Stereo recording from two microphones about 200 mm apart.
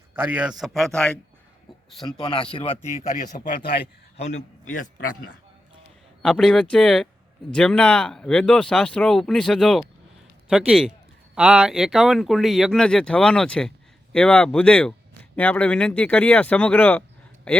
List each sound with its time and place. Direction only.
0.1 s speech: 10° right (ahead or behind)
2.0 s speech: 25° left (ahead or behind)
4.7 s a man's voice: 45° left (ahead or behind)
6.2 s speech: 5° left (ahead or behind)